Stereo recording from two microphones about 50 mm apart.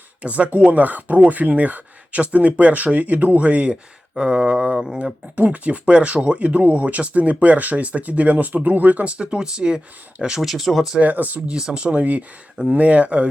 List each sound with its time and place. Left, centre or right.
0.2 s speech: right
5.4 s speech: right
10.4 s speech: centre
11.0 s speech: right
11.4 s speech: centre